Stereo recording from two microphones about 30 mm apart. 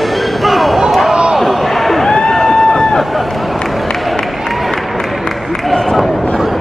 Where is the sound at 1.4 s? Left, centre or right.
Centre.